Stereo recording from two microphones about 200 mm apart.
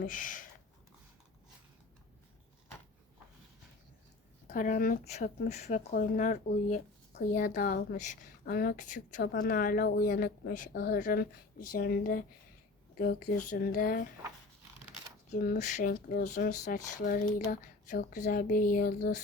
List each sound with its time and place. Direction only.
0.0 s speech: 40° left (ahead or behind)
4.4 s speech: 40° left (ahead or behind)
8.4 s a woman's voice: 50° left (ahead or behind)
13.3 s a woman's voice: 40° left (ahead or behind)
15.3 s a woman's voice: 40° left (ahead or behind)